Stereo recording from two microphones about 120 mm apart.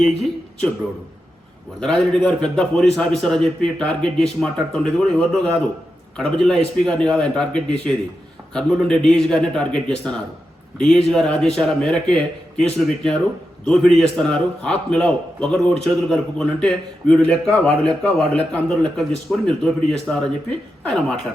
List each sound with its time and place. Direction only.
0.0 s a man's voice: 5° left (ahead or behind)
1.8 s a man's voice: 5° left (ahead or behind)